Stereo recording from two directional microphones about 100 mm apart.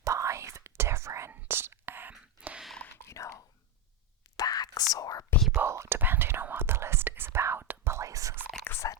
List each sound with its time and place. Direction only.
0.0 s whispering: 30° right (ahead or behind); by 2.6 s 15° right (ahead or behind)
3.0 s whispering: 30° left (ahead or behind)
5.5 s whispering: 30° right (ahead or behind)
8.6 s whispering: 25° left (ahead or behind)